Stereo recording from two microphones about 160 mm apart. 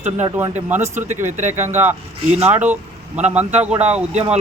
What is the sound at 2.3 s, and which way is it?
Speech, 45° right (ahead or behind).